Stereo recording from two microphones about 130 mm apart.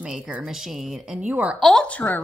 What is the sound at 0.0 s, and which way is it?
A woman's voice, 10° right (ahead or behind).